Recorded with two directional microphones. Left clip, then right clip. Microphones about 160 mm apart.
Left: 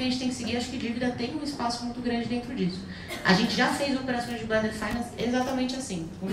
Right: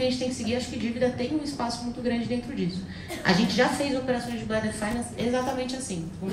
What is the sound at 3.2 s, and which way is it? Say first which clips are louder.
A woman's voice: right 1 dB; 25° right (ahead or behind).